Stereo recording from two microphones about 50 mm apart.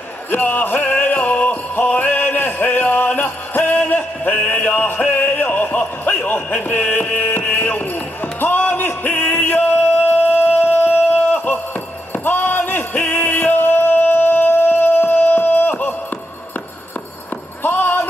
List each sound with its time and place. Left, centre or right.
0.3 s music: left
10.6 s music: left
12.3 s a sound: left
17.6 s music: left